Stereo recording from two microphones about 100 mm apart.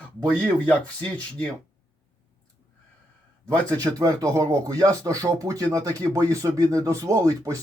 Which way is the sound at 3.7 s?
35° right (ahead or behind).